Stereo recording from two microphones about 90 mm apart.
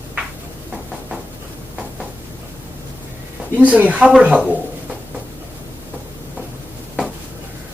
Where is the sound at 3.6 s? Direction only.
15° right (ahead or behind).